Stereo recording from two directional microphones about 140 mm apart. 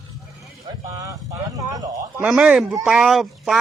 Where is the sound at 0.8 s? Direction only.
20° right (ahead or behind).